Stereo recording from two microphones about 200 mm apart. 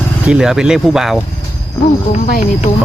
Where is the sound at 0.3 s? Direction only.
Centre (ahead or behind).